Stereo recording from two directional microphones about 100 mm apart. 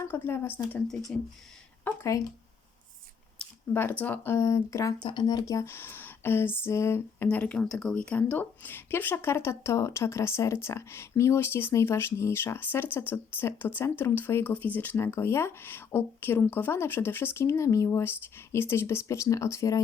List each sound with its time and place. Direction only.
0.0 s a woman's voice: 25° left (ahead or behind)
1.1 s speech: 10° left (ahead or behind)
3.7 s a woman's voice: 20° left (ahead or behind)
5.0 s a woman's voice: 45° left (ahead or behind); by 7.3 s 25° left (ahead or behind)
7.3 s a woman's voice: 10° left (ahead or behind); by 19.8 s 30° left (ahead or behind)